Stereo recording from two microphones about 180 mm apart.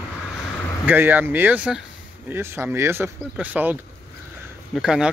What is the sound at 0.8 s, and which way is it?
Speech, 10° right (ahead or behind).